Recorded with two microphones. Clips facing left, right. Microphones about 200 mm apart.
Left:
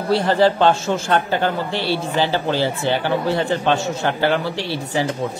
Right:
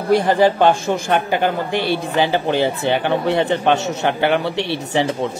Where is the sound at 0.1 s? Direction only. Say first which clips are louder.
Right 2 dB; 15° right (ahead or behind).